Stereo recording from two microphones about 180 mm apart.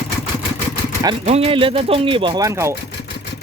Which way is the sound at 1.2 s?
35° right (ahead or behind).